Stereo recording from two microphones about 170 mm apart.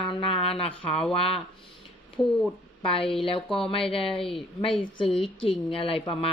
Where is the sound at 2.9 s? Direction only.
30° left (ahead or behind).